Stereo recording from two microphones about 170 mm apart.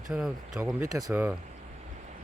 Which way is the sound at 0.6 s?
15° right (ahead or behind).